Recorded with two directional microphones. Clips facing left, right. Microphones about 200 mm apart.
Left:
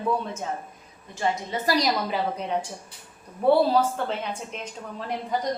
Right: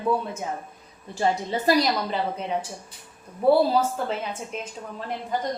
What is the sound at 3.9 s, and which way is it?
Speech, 5° right (ahead or behind).